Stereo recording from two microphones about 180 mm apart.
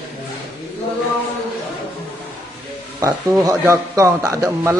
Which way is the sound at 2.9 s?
15° right (ahead or behind).